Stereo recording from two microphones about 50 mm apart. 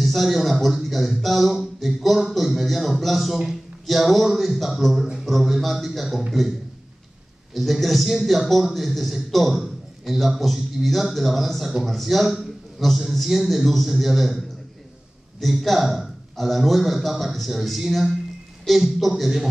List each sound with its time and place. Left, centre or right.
0.0 s speech: centre
7.5 s speech: centre
15.4 s speech: centre